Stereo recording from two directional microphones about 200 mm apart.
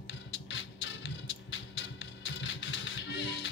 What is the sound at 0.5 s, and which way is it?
Music, 70° left (ahead or behind).